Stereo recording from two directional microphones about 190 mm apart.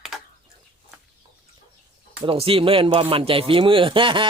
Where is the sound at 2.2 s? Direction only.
30° right (ahead or behind).